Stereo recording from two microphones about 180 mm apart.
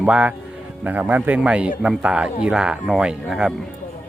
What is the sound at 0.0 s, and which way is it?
A man's voice, 5° right (ahead or behind).